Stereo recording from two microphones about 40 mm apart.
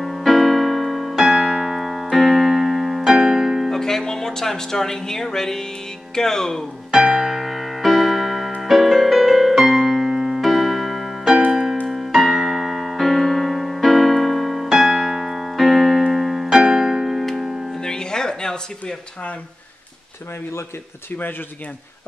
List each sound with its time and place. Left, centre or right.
0.0 s keyboard: centre
3.1 s music: centre
3.7 s speech: centre
6.9 s piano: centre
7.2 s music: centre
12.4 s keyboard: centre
17.7 s music: centre